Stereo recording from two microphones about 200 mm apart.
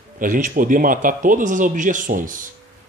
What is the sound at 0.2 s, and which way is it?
Speech, 45° right (ahead or behind).